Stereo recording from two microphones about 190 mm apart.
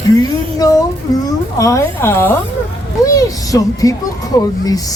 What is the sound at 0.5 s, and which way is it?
Music, 20° left (ahead or behind).